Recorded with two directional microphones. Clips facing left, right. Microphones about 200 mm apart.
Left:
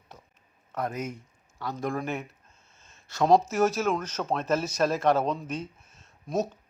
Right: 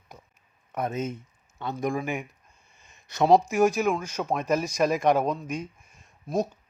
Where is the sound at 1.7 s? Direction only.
15° right (ahead or behind).